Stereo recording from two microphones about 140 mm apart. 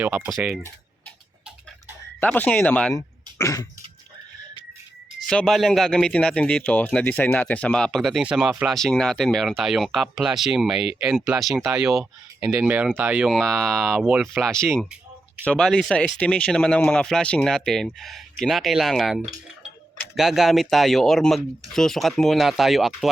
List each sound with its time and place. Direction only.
0.3 s a man's voice: 5° right (ahead or behind)
2.2 s speech: 10° left (ahead or behind)
2.9 s throat clearing: 20° left (ahead or behind)
5.2 s a man's voice: 5° left (ahead or behind)